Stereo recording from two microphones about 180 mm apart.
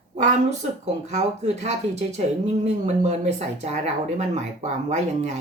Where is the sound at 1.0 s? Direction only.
40° right (ahead or behind).